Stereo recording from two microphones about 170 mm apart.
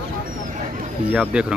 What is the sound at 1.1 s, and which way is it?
Speech, 5° right (ahead or behind).